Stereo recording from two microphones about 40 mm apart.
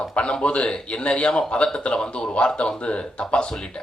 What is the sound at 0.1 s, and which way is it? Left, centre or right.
A man's voice, left.